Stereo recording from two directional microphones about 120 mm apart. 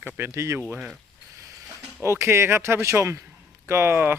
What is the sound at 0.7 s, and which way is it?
Speech, 5° right (ahead or behind).